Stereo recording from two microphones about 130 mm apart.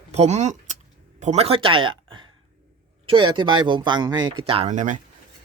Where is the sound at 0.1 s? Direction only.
60° right (ahead or behind).